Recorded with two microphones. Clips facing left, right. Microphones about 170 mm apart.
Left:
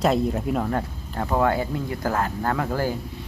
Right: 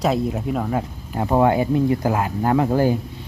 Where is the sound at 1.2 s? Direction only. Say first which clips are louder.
Right 5 dB; 20° right (ahead or behind).